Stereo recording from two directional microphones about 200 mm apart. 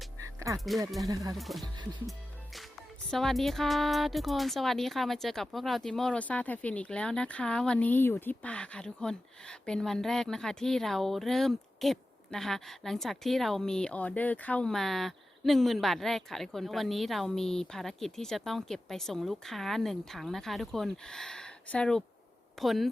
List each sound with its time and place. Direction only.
0.2 s music: 15° right (ahead or behind)
1.0 s speech: 15° right (ahead or behind)
1.4 s speech: centre (ahead or behind)
2.0 s music: centre (ahead or behind)
3.1 s speech: centre (ahead or behind)